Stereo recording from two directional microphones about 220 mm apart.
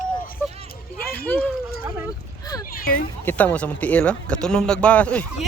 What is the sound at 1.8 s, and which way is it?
Speech, 10° right (ahead or behind).